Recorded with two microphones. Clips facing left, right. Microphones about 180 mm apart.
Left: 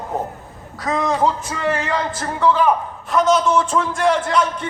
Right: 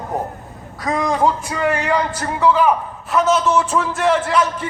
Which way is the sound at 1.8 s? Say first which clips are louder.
Right 3 dB; 10° right (ahead or behind).